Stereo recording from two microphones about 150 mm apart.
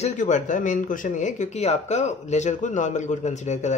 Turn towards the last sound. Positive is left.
turn(degrees=50)  # may be behind; listen again after turning